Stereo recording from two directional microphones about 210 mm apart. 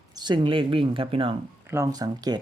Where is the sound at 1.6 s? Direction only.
15° right (ahead or behind).